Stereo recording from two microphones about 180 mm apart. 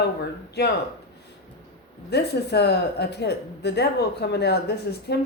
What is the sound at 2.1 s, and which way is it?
A woman's voice, 65° left (ahead or behind).